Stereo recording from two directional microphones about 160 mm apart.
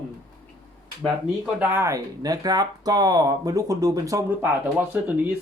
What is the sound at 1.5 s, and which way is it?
Speech, 10° right (ahead or behind).